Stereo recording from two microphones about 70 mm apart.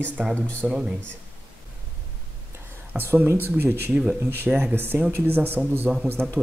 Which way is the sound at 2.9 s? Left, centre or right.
Right.